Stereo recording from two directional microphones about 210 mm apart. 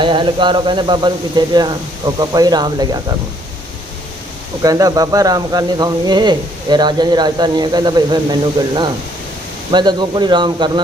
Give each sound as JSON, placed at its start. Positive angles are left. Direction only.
{"t": 0.0, "sound": "speech", "side_deg": -20}
{"t": 4.6, "sound": "speech", "side_deg": -15}